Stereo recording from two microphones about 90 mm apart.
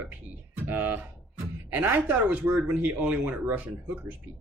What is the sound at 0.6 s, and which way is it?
Speech, 20° right (ahead or behind).